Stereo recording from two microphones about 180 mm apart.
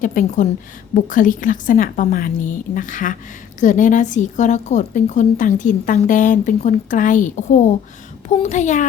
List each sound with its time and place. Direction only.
0.0 s a woman's voice: 45° left (ahead or behind)